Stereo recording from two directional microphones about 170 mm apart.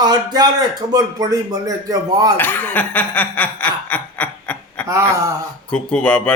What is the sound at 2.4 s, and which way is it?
A man's voice, 10° left (ahead or behind).